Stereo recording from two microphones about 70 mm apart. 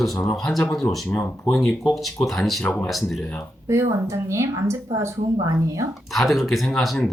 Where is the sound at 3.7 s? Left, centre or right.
Right.